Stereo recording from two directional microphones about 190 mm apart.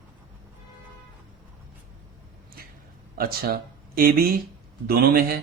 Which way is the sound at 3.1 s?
50° right (ahead or behind).